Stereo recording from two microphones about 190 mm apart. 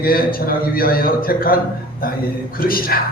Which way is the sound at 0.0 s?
50° left (ahead or behind).